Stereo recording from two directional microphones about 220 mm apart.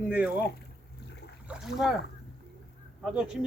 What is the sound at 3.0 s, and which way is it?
Speech, 5° right (ahead or behind).